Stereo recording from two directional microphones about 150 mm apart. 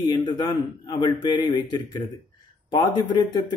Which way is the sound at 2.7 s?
25° left (ahead or behind).